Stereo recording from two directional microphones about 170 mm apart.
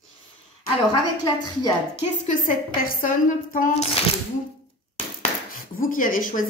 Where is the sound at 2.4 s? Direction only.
55° left (ahead or behind).